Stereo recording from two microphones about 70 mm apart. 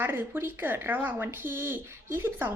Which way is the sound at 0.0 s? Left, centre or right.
Right.